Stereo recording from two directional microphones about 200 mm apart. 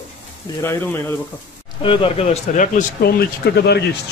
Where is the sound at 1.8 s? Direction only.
25° left (ahead or behind).